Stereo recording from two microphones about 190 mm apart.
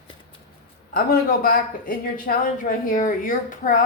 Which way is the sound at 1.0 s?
50° left (ahead or behind).